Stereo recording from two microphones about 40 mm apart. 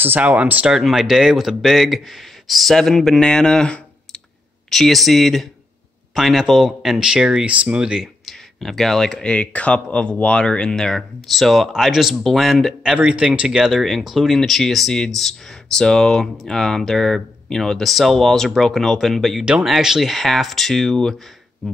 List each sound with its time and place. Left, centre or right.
0.2 s speech: right
1.0 s speech: centre
3.2 s speech: centre
4.6 s speech: centre; by 8.1 s right
8.3 s speech: centre
9.2 s speech: left
10.7 s speech: centre
11.1 s speech: centre
11.7 s speech: centre
12.9 s speech: right
13.7 s speech: centre
17.8 s speech: centre
19.6 s speech: centre